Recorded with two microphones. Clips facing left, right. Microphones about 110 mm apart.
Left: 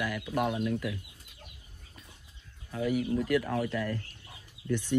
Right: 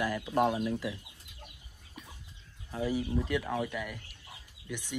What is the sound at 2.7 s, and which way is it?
Speech, 30° right (ahead or behind).